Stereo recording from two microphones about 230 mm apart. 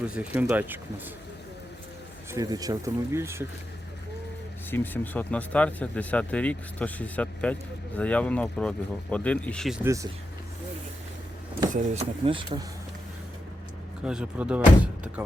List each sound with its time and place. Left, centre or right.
0.0 s speech: centre
2.3 s speech: centre
4.7 s speech: centre
9.8 s speech: centre
11.7 s speech: right
14.0 s speech: centre